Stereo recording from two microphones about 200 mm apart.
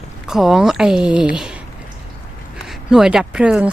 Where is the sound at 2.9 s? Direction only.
5° right (ahead or behind).